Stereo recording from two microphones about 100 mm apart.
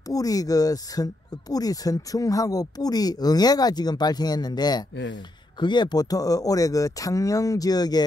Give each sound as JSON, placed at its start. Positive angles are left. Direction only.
{"t": 0.1, "sound": "speech", "side_deg": 35}